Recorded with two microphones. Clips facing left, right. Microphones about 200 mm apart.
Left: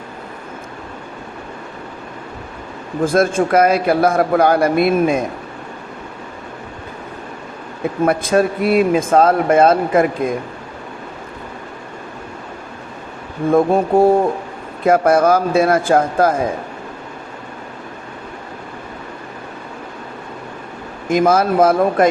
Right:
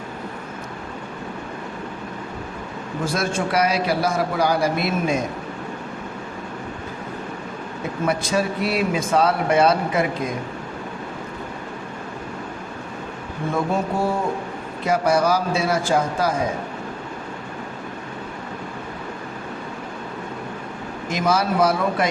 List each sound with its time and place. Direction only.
3.0 s a man's voice: 50° left (ahead or behind)
8.0 s speech: 55° left (ahead or behind)
13.5 s speech: 55° left (ahead or behind)
21.1 s speech: 50° left (ahead or behind)